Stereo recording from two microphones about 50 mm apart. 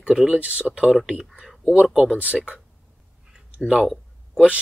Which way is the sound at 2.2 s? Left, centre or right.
Right.